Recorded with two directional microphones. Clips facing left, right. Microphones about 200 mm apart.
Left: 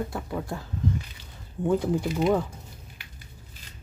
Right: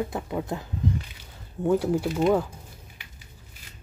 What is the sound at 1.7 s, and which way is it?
Speech, 10° right (ahead or behind).